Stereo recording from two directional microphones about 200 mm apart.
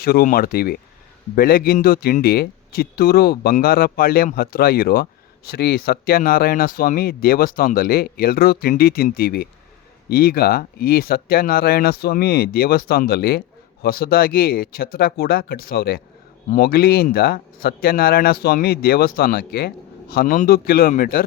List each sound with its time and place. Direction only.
0.0 s speech: 50° left (ahead or behind)